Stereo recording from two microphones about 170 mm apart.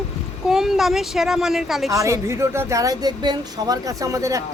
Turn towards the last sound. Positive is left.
turn(degrees=-20)  # may be behind; listen again after turning